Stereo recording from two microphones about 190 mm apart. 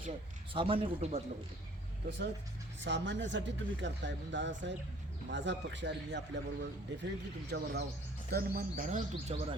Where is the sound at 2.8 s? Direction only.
70° right (ahead or behind).